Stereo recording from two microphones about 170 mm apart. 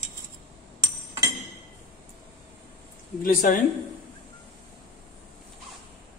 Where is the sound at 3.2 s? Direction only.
55° left (ahead or behind).